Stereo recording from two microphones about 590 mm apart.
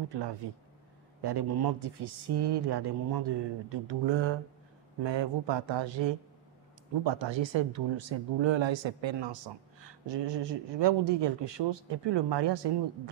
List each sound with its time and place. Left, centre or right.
0.1 s speech: right